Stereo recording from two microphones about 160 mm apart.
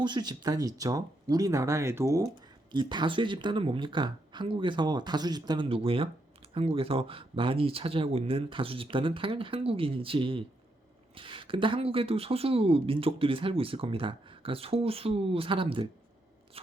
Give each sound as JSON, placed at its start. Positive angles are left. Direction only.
{"t": 0.0, "sound": "speech", "side_deg": -25}